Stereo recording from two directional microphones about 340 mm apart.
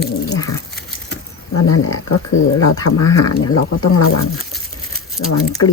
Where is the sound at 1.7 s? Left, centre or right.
Left.